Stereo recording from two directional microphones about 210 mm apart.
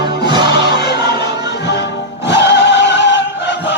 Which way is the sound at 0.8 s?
50° left (ahead or behind).